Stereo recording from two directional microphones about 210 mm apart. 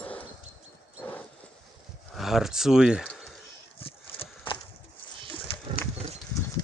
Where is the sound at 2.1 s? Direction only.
Centre (ahead or behind).